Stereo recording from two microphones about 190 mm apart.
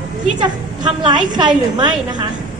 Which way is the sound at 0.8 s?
25° right (ahead or behind).